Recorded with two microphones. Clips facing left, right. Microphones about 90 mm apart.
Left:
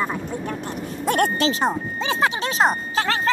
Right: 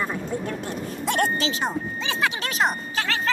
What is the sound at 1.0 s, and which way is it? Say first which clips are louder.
Speech: left 4 dB; 45° left (ahead or behind).